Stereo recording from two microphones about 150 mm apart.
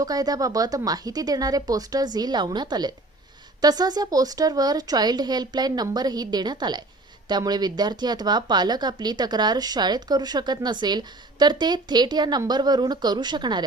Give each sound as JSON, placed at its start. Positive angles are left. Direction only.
{"t": 0.0, "sound": "a woman's voice", "side_deg": -25}